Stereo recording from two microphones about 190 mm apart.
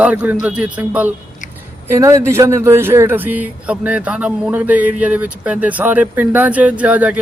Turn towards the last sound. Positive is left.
turn(degrees=-10)  # may be behind; listen again after turning